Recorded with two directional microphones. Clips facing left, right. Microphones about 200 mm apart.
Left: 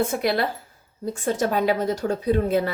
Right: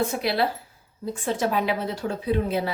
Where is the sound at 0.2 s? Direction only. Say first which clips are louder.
Left 1 dB; 50° left (ahead or behind).